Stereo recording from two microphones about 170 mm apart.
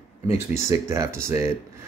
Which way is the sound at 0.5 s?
15° right (ahead or behind).